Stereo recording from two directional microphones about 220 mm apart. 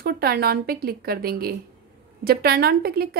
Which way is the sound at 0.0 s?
45° right (ahead or behind).